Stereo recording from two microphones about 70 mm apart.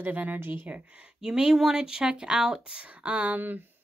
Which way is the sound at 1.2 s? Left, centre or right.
Centre.